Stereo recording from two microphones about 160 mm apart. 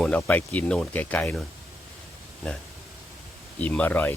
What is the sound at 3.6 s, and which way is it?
Speech, 10° left (ahead or behind).